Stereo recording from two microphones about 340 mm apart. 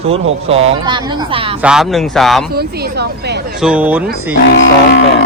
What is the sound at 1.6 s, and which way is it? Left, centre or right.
Speech, centre.